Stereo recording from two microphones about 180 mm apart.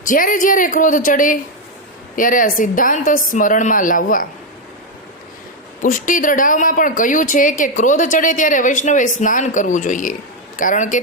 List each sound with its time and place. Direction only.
0.0 s speech: 50° left (ahead or behind)
5.8 s speech: 45° left (ahead or behind)